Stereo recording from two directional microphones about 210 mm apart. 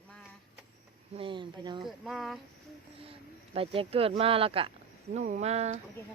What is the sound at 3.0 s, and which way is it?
Speech, 25° right (ahead or behind).